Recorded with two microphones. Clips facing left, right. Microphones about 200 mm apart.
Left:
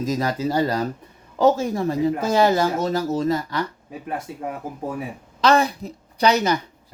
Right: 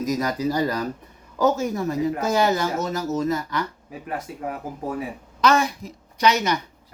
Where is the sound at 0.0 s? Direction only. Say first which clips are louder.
Even; 25° left (ahead or behind).